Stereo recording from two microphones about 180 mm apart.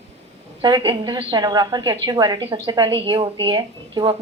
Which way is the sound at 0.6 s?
25° right (ahead or behind).